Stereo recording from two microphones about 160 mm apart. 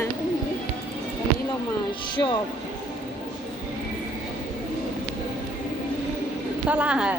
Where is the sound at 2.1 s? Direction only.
30° left (ahead or behind).